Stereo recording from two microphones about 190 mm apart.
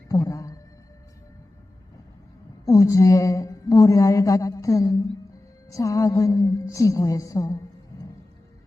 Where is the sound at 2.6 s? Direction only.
15° left (ahead or behind).